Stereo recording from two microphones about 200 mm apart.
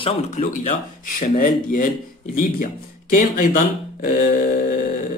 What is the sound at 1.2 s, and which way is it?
Speech, 40° left (ahead or behind).